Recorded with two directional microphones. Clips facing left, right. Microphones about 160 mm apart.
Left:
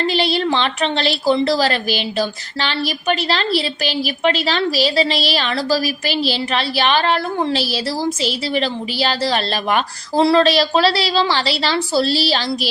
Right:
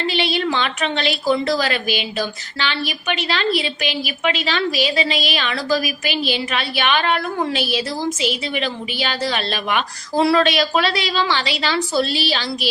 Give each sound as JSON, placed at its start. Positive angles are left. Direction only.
{"t": 0.0, "sound": "a woman's voice", "side_deg": 40}